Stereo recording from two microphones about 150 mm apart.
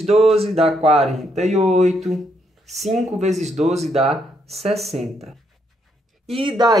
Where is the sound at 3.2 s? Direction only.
50° right (ahead or behind).